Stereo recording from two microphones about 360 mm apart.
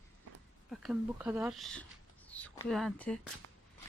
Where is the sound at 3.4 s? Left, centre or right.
Right.